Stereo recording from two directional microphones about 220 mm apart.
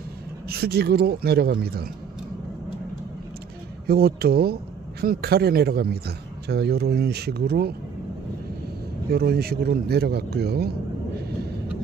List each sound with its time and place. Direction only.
0.5 s a man's voice: 45° right (ahead or behind)
3.8 s a man's voice: 45° right (ahead or behind)
9.1 s a man's voice: 45° right (ahead or behind)